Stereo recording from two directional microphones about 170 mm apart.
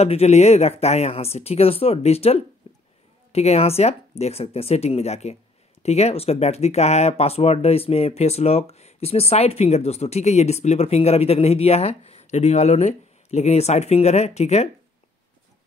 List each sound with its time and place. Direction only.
0.0 s speech: 40° left (ahead or behind)
2.6 s a sound: 35° left (ahead or behind)
3.3 s speech: 40° left (ahead or behind)